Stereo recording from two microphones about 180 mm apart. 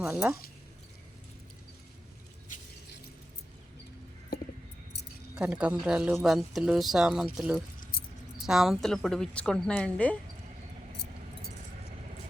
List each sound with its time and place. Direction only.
0.0 s speech: 10° right (ahead or behind)
5.4 s speech: 5° right (ahead or behind)
7.8 s keys jangling: 55° left (ahead or behind)
8.4 s speech: centre (ahead or behind)